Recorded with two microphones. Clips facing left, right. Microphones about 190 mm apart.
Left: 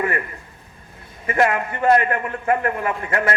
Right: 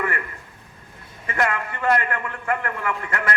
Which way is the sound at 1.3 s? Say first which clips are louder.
Left 5 dB; 25° left (ahead or behind).